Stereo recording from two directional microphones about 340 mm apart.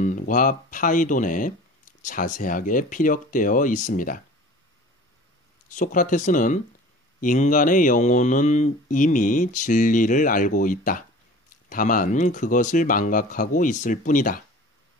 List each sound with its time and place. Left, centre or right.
0.0 s speech: left
5.7 s speech: left